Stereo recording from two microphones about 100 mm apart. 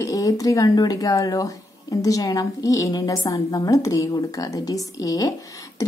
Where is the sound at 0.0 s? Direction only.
35° left (ahead or behind).